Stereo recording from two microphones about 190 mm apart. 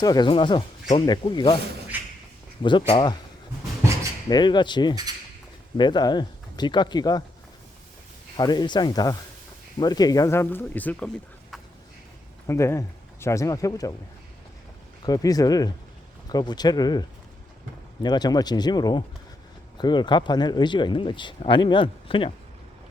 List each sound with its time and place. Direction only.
0.0 s speech: 20° left (ahead or behind)
1.9 s a sound: 10° right (ahead or behind)
2.6 s speech: 25° left (ahead or behind)
4.3 s speech: 20° left (ahead or behind)
8.4 s speech: 20° left (ahead or behind)
12.5 s speech: 15° left (ahead or behind)
15.0 s speech: 20° left (ahead or behind)